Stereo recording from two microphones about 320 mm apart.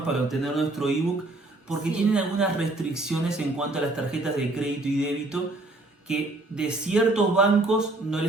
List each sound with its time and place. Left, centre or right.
0.1 s a woman's voice: centre